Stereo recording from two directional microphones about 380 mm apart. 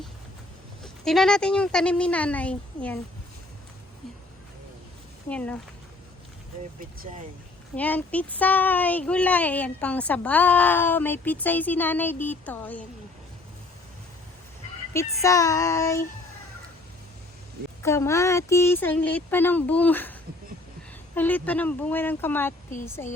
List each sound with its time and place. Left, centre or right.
1.0 s speech: centre
5.3 s speech: centre
6.7 s speech: right
7.8 s speech: centre
14.9 s child singing: centre
17.8 s speech: centre
21.2 s speech: centre
23.0 s child singing: centre